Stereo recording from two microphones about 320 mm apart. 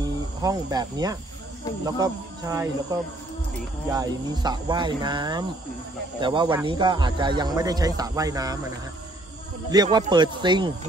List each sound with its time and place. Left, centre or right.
0.0 s speech: centre
9.7 s speech: centre